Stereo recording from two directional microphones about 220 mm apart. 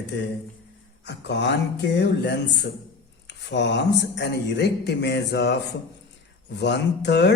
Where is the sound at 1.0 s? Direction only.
55° left (ahead or behind).